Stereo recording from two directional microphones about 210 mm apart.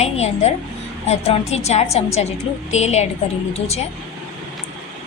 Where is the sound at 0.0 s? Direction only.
30° left (ahead or behind).